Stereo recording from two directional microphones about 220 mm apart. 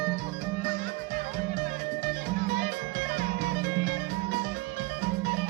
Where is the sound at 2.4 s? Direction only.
45° right (ahead or behind).